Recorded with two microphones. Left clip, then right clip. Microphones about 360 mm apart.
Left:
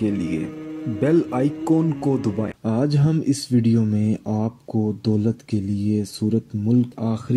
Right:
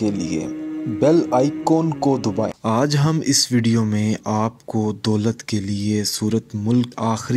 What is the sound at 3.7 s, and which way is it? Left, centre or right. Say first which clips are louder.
Speech: right 1 dB; right.